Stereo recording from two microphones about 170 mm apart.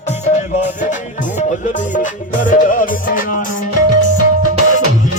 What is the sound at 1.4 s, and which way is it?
Music, 45° left (ahead or behind).